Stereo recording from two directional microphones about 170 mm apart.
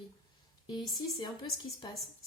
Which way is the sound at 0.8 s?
25° left (ahead or behind).